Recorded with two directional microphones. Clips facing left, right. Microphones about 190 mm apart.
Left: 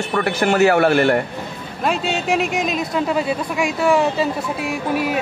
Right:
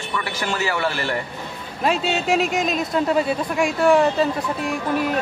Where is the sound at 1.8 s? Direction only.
Centre (ahead or behind).